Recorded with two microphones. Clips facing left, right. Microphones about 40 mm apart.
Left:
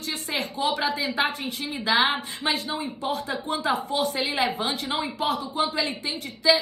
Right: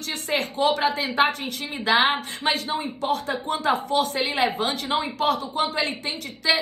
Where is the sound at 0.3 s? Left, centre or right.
Right.